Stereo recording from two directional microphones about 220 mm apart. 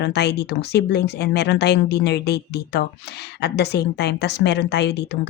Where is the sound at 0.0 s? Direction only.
50° left (ahead or behind).